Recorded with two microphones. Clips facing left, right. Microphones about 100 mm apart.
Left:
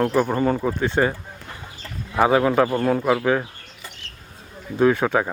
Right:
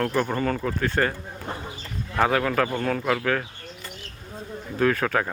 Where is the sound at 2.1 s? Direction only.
15° left (ahead or behind).